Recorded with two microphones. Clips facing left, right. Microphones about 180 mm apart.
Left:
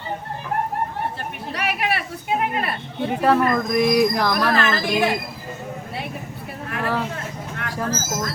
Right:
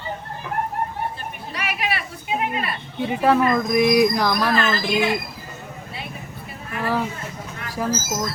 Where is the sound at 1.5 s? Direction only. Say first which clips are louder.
Left 3 dB; 60° left (ahead or behind).